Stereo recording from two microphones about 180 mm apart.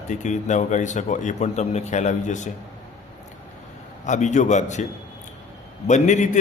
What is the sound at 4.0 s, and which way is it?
Speech, 40° left (ahead or behind).